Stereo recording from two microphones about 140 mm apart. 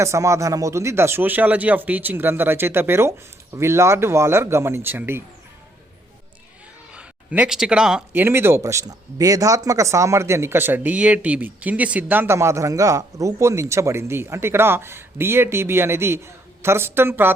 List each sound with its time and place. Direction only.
0.0 s speech: 20° right (ahead or behind)
6.9 s speech: 10° right (ahead or behind)